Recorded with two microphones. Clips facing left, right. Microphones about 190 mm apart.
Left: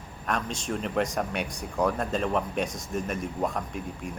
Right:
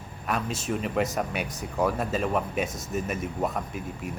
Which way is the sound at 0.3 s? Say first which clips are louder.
Right 1 dB; 5° right (ahead or behind).